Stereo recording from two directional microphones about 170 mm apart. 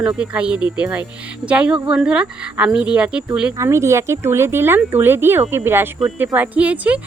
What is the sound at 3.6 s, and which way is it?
Speech, 15° right (ahead or behind).